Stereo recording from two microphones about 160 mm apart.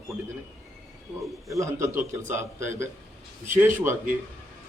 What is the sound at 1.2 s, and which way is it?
A man's voice, 20° right (ahead or behind).